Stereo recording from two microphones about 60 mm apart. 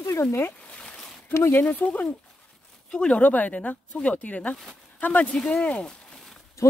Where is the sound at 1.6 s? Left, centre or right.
Left.